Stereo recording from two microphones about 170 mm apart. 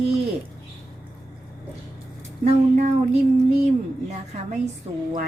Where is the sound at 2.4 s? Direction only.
40° right (ahead or behind).